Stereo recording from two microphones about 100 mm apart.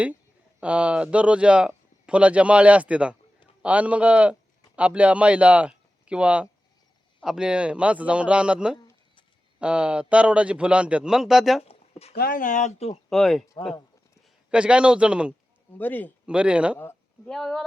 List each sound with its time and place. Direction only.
0.6 s speech: 10° right (ahead or behind)
11.7 s a sound: 90° left
13.1 s speech: 5° left (ahead or behind)
14.5 s speech: 10° right (ahead or behind)
15.8 s a man's voice: 20° left (ahead or behind)
16.2 s speech: 10° right (ahead or behind)
17.2 s speech: 5° left (ahead or behind)